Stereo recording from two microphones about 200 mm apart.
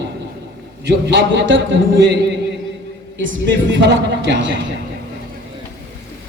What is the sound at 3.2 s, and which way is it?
A woman's voice, 65° right (ahead or behind).